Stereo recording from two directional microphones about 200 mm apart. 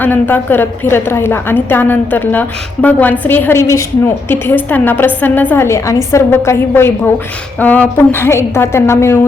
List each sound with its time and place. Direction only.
0.0 s a woman's voice: 10° left (ahead or behind)